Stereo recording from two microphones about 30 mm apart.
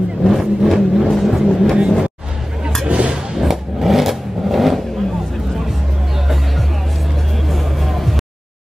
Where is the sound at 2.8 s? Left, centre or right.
Right.